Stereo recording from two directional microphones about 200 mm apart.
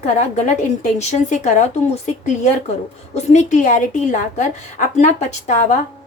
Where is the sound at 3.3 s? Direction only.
40° left (ahead or behind).